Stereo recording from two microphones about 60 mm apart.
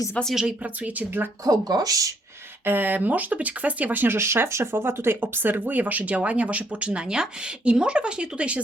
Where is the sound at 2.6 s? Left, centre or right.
Right.